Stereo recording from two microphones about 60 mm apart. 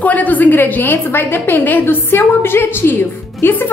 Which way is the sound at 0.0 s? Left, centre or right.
Left.